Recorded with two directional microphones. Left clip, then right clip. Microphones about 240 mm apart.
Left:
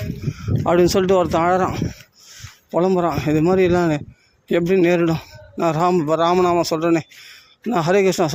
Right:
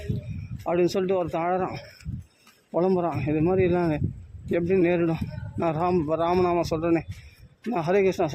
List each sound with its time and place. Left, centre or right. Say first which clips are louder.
0.6 s a man's voice: left 8 dB; centre